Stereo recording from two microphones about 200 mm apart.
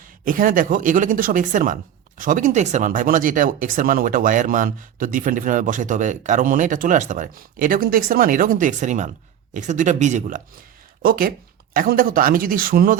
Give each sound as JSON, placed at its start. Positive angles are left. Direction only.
{"t": 0.3, "sound": "speech", "side_deg": -45}